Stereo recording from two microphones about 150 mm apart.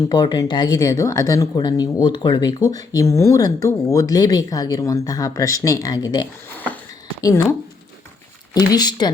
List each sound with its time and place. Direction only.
0.1 s speech: 30° left (ahead or behind)
8.5 s speech: 25° left (ahead or behind)